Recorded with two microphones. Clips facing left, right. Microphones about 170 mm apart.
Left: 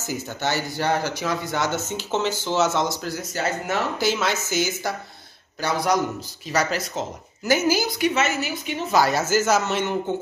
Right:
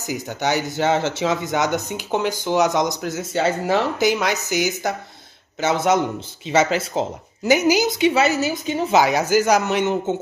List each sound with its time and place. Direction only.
0.0 s speech: 15° right (ahead or behind)
4.0 s a woman's voice: 15° right (ahead or behind)
7.4 s a woman's voice: 15° right (ahead or behind)
8.1 s a woman's voice: 35° right (ahead or behind)
8.9 s speech: 15° right (ahead or behind)